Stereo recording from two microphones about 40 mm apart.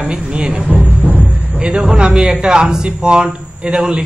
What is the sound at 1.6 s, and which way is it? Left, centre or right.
Speech, right.